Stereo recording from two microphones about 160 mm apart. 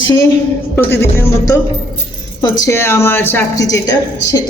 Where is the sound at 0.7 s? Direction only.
15° left (ahead or behind).